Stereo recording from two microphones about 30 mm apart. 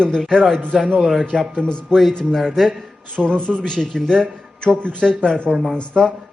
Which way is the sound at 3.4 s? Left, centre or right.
Right.